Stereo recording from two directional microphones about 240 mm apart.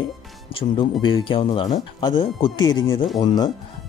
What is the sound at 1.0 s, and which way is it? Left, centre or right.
Speech, left.